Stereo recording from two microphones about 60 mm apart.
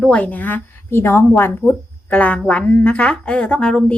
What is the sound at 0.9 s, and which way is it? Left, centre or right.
Speech, left.